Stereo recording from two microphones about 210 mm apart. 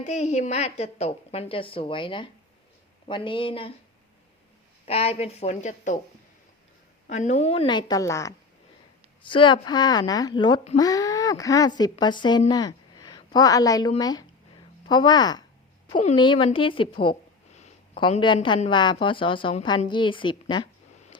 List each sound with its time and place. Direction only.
0.0 s a woman's voice: 35° left (ahead or behind)
4.9 s a woman's voice: 30° left (ahead or behind)
7.1 s a woman's voice: 35° left (ahead or behind)